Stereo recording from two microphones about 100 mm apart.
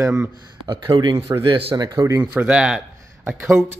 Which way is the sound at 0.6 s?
50° right (ahead or behind).